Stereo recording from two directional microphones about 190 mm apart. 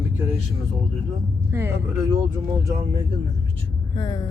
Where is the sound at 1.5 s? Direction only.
15° right (ahead or behind).